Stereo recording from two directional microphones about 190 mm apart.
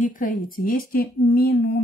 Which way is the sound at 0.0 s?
45° left (ahead or behind).